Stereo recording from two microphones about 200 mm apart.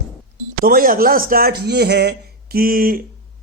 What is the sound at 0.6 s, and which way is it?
Speech, 45° right (ahead or behind).